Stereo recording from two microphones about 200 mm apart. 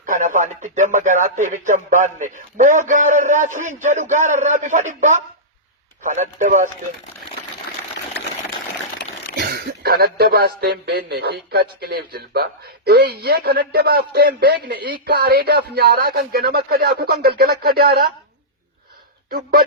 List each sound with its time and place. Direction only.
0.0 s speech: 40° right (ahead or behind)
9.3 s speech: 50° right (ahead or behind)